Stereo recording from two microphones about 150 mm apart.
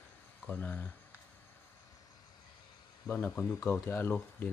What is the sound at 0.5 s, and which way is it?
Speech, 10° left (ahead or behind).